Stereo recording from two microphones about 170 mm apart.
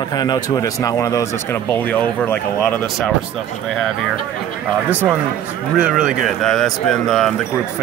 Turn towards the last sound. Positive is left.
turn(degrees=5)  # may be behind; listen again after turning